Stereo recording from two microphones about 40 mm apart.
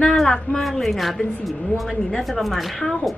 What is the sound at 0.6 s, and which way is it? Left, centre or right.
A woman's voice, centre.